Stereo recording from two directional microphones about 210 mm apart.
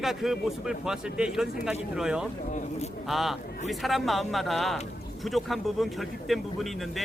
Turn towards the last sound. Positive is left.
turn(degrees=0)  # may be behind; listen again after turning